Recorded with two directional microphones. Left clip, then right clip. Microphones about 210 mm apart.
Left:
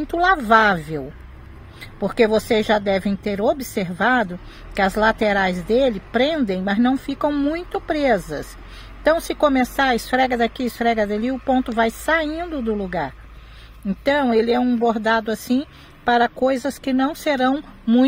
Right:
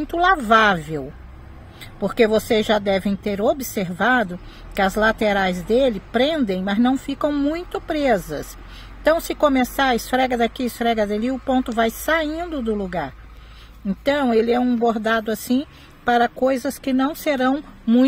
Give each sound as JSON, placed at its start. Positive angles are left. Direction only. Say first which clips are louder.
{"t": 0.0, "sound": "speech", "louder": "even", "side_deg": 0}